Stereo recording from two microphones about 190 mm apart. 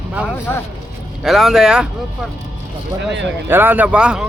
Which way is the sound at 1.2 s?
Centre (ahead or behind).